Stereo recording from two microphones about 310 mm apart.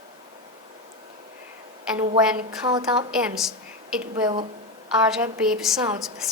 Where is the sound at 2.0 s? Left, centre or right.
Right.